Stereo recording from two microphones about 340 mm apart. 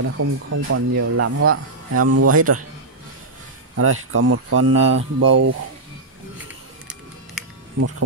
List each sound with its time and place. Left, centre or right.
0.0 s speech: right
3.7 s speech: right
7.8 s speech: right